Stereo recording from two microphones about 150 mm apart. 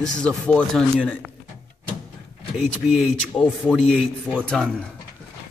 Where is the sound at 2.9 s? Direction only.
5° right (ahead or behind).